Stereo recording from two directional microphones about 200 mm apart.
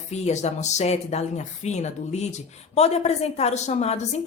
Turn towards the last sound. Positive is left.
turn(degrees=30)  # may be behind; listen again after turning